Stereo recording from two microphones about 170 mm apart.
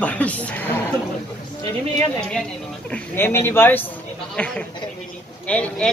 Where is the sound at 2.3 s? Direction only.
5° left (ahead or behind).